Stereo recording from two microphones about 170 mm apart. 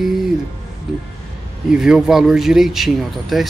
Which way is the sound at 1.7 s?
5° right (ahead or behind).